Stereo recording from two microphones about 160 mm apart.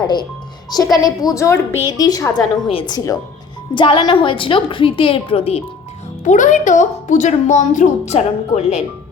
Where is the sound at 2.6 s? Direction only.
35° left (ahead or behind).